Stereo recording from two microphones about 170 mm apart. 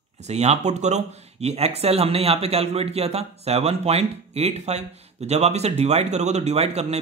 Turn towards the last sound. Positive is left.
turn(degrees=-40)  # may be behind; listen again after turning